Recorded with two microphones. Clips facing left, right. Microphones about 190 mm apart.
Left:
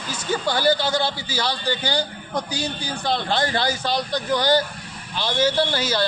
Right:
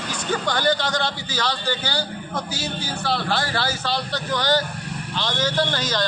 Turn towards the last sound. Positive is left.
turn(degrees=10)  # may be behind; listen again after turning